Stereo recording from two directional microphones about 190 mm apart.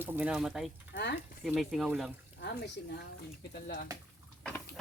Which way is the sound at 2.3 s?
65° left (ahead or behind).